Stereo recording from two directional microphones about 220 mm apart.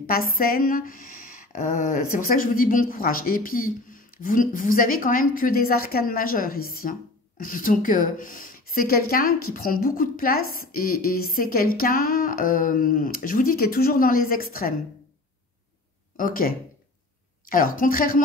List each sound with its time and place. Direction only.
0.0 s speech: 40° left (ahead or behind)
16.2 s speech: 40° left (ahead or behind)